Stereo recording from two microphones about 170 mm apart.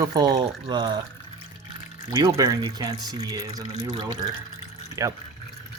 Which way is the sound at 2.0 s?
25° right (ahead or behind).